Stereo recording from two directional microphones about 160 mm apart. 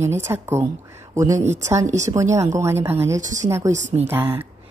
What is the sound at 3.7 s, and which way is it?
Speech, 45° right (ahead or behind).